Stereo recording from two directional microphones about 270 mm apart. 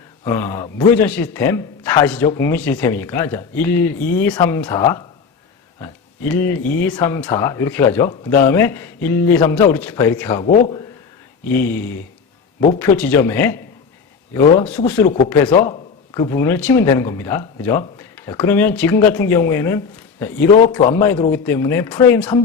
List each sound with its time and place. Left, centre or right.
0.3 s a man's voice: centre
11.4 s a man's voice: centre
15.7 s a sound: centre
16.3 s a man's voice: centre